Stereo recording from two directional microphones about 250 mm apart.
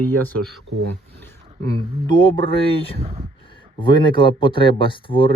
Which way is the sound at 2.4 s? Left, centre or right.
Left.